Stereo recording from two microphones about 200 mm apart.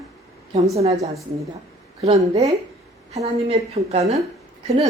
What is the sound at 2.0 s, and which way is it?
A woman's voice, 30° right (ahead or behind).